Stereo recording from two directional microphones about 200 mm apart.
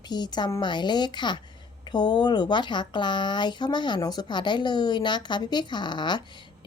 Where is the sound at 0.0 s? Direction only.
20° left (ahead or behind).